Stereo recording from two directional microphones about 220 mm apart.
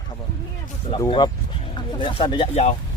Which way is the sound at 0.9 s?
20° left (ahead or behind).